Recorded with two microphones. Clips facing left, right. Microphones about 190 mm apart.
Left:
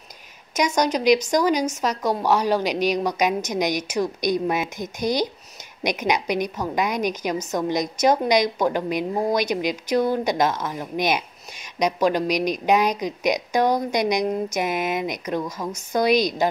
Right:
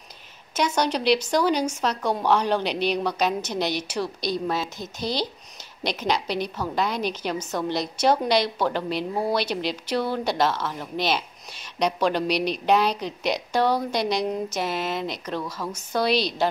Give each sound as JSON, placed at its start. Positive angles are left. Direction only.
{"t": 0.6, "sound": "a woman's voice", "side_deg": 10}